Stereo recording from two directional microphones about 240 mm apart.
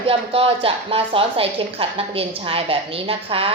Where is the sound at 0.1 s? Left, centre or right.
Right.